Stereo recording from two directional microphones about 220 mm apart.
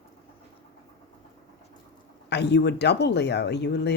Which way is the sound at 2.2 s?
50° left (ahead or behind).